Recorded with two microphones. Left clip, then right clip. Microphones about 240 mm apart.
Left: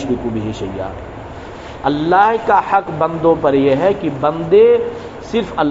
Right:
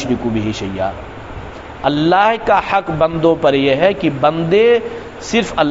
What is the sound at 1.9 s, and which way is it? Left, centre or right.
A man's voice, right.